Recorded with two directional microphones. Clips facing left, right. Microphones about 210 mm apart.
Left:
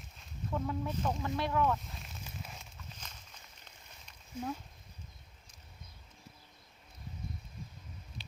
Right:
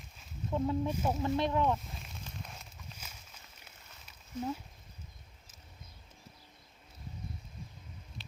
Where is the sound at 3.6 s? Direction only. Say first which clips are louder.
Even; 10° right (ahead or behind).